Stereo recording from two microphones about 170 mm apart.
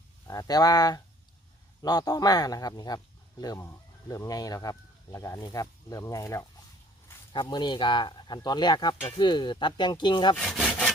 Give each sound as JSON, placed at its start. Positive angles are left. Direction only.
{"t": 0.3, "sound": "speech", "side_deg": 20}
{"t": 10.3, "sound": "sawing", "side_deg": 5}